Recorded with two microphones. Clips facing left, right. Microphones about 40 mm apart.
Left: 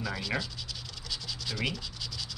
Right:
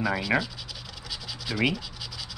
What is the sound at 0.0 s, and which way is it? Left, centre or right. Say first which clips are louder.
Speech: right 8 dB; centre.